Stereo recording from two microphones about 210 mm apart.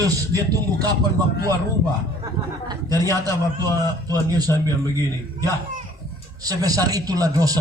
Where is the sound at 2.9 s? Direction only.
15° right (ahead or behind).